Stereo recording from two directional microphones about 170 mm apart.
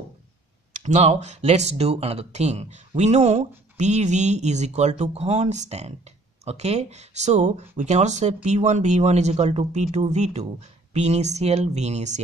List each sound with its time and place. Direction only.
0.8 s speech: 40° right (ahead or behind)